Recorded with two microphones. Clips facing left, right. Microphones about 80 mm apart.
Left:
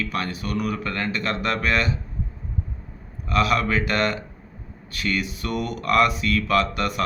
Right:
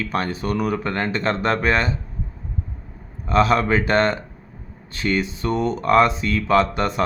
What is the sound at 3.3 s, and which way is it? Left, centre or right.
Speech, right.